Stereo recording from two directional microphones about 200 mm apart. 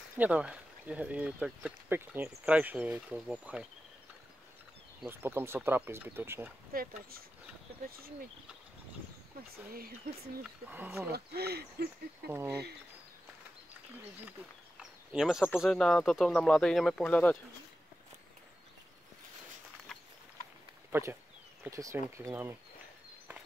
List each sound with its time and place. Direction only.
0.2 s speech: 5° right (ahead or behind)
5.0 s speech: 10° right (ahead or behind)
6.7 s hoot: 45° right (ahead or behind)
9.7 s hoot: 50° right (ahead or behind)
10.4 s speech: 10° right (ahead or behind)
11.1 s hoot: 55° right (ahead or behind)
12.3 s speech: 10° right (ahead or behind)
14.8 s a sound: 5° right (ahead or behind)
15.5 s speech: centre (ahead or behind)
20.9 s speech: 10° right (ahead or behind)